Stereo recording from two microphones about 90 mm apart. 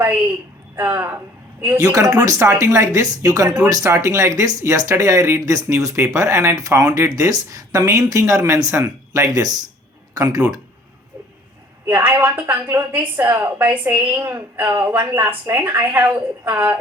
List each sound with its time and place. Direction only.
0.8 s a woman's voice: 25° right (ahead or behind)
1.8 s speech: 40° right (ahead or behind)
11.9 s a woman's voice: 25° right (ahead or behind)